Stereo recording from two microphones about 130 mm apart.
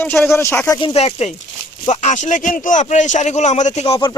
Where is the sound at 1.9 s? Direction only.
65° left (ahead or behind); by 4.1 s 45° left (ahead or behind).